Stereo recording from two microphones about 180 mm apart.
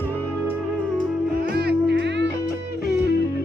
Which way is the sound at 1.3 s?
60° right (ahead or behind).